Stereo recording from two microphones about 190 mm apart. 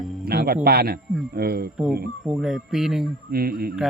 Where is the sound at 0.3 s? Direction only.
55° right (ahead or behind).